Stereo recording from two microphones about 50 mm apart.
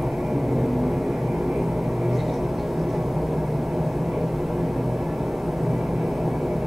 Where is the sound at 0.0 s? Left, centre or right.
Centre.